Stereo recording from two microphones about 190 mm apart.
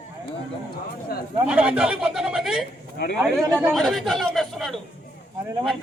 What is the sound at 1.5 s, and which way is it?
A man's voice, 5° right (ahead or behind).